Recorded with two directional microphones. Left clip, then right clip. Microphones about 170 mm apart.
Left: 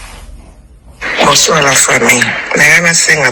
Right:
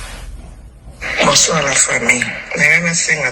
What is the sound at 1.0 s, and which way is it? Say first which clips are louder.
Speech: left 4 dB; 35° left (ahead or behind).